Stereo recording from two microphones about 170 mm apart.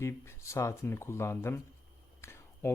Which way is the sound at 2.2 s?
15° left (ahead or behind).